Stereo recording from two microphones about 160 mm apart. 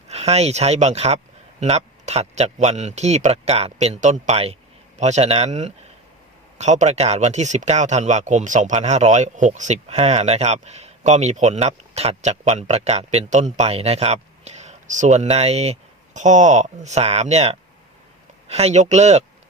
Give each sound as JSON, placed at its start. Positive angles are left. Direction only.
{"t": 0.1, "sound": "speech", "side_deg": -40}